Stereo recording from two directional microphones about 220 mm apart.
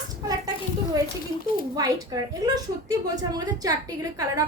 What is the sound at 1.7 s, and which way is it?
A woman's voice, 15° right (ahead or behind).